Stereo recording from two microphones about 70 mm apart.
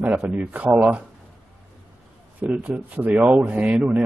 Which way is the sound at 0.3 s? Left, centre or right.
Right.